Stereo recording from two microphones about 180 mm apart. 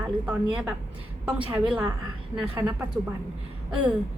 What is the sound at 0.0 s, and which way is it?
A woman's voice, 10° right (ahead or behind).